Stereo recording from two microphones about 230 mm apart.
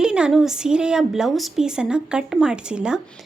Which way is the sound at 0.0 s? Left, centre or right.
Centre.